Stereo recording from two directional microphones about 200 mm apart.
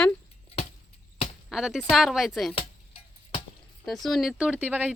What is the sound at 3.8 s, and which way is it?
Speech, centre (ahead or behind).